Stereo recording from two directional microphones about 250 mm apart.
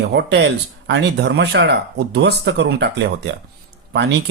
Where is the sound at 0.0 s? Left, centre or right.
Right.